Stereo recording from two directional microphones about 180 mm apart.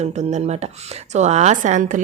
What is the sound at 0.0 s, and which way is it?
A woman's voice, 40° right (ahead or behind).